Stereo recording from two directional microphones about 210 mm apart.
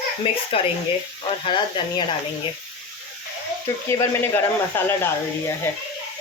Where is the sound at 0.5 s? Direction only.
25° left (ahead or behind).